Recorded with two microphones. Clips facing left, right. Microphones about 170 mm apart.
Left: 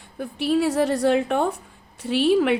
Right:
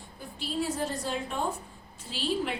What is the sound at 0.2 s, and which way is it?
A woman's voice, 65° left (ahead or behind).